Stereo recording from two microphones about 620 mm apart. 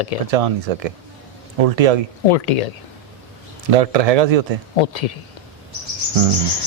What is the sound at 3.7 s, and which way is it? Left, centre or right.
Speech, right.